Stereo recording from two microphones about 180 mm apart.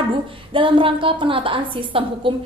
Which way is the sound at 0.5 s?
30° right (ahead or behind).